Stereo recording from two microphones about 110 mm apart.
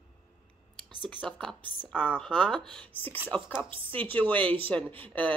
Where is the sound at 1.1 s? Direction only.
15° left (ahead or behind).